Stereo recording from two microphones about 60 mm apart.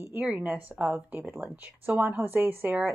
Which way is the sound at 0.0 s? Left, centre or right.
Right.